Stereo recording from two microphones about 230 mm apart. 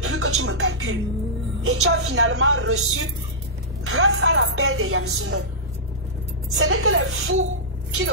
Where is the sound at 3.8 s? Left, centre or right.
Right.